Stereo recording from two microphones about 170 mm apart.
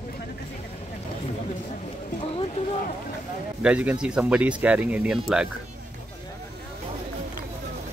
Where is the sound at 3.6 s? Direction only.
10° right (ahead or behind).